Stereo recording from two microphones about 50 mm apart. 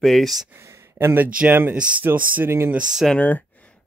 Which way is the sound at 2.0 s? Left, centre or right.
Right.